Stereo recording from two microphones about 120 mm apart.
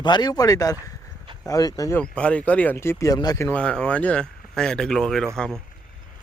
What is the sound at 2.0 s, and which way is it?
Speech, 10° left (ahead or behind).